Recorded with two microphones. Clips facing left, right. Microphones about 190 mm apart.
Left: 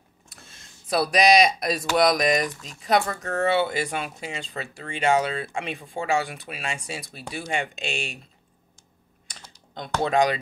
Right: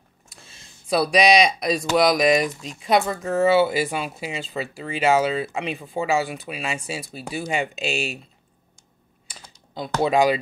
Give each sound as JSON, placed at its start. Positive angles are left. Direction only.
{"t": 0.8, "sound": "speech", "side_deg": 0}
{"t": 9.8, "sound": "speech", "side_deg": -5}